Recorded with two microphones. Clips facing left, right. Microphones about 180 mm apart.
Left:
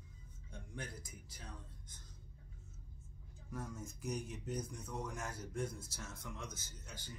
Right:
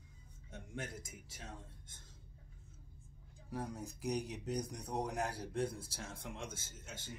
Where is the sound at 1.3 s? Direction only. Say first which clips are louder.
Right 3 dB; 50° right (ahead or behind).